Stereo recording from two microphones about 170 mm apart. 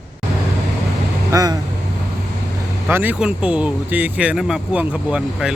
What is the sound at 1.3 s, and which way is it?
Speech, 20° right (ahead or behind).